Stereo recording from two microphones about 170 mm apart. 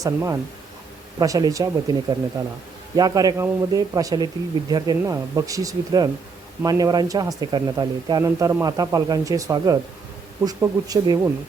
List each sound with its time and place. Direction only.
0.0 s speech: 20° right (ahead or behind)